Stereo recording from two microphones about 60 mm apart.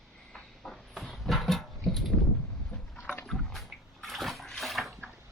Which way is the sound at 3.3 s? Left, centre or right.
Centre.